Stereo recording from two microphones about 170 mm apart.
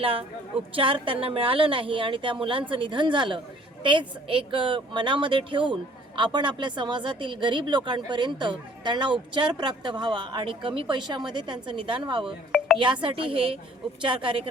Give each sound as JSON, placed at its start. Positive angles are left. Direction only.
{"t": 0.0, "sound": "a woman's voice", "side_deg": -30}
{"t": 12.2, "sound": "a sound", "side_deg": 0}
{"t": 12.8, "sound": "a woman's voice", "side_deg": -30}